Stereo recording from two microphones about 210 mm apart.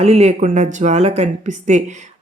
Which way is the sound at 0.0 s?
30° right (ahead or behind).